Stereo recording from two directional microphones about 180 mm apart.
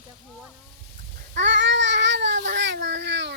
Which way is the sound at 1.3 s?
85° right.